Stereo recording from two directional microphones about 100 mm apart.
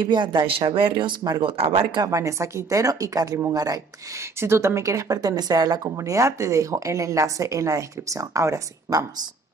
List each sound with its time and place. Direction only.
0.0 s speech: 50° right (ahead or behind)
1.4 s speech: 65° right (ahead or behind)
2.0 s a woman's voice: 30° right (ahead or behind)
4.4 s a woman's voice: 25° right (ahead or behind)